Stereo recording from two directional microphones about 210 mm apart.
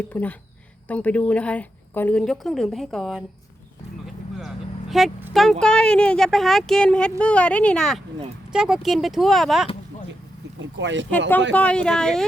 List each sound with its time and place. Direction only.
0.1 s a woman's voice: 5° left (ahead or behind)
10.8 s speech: 60° right (ahead or behind)
11.5 s a woman's voice: 5° left (ahead or behind)